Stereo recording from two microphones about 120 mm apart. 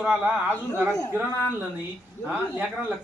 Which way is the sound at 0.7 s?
20° right (ahead or behind).